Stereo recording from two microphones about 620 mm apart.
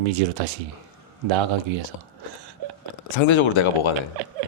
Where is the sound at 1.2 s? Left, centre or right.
Right.